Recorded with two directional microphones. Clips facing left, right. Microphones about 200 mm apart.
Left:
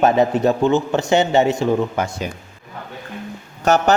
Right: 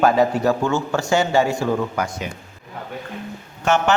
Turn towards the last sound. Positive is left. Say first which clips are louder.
# left 3 dB
turn(degrees=40)  # may be behind; listen again after turning